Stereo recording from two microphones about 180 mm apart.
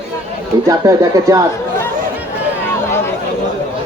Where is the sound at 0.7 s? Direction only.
20° right (ahead or behind).